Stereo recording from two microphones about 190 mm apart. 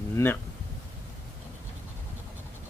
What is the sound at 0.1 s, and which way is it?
Speech, 10° left (ahead or behind).